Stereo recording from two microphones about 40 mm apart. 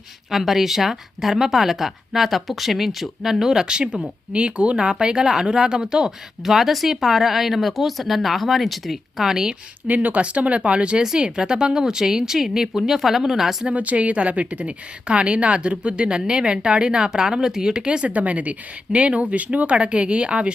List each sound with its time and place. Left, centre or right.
0.3 s speech: centre
4.3 s speech: right; by 9.3 s centre
9.3 s a woman's voice: centre
9.8 s speech: right
10.2 s a woman's voice: right; by 13.7 s centre
13.7 s a woman's voice: right